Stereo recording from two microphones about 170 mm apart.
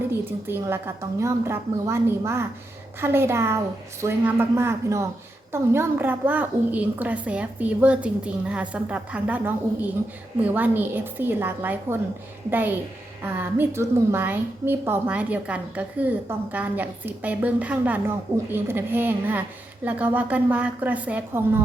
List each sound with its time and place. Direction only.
0.1 s a woman's voice: 15° right (ahead or behind)